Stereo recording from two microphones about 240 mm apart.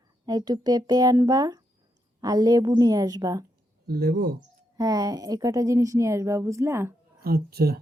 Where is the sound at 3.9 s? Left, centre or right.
Right.